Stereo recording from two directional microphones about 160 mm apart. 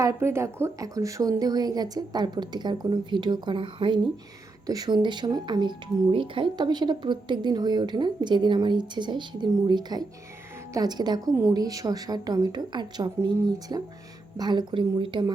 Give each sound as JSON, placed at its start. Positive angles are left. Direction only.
{"t": 0.0, "sound": "speech", "side_deg": -15}